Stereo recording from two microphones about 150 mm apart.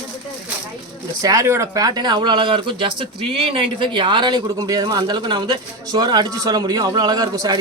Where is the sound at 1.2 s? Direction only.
20° right (ahead or behind).